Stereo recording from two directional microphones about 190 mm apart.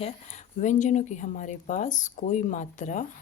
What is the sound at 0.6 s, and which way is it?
Speech, 40° left (ahead or behind).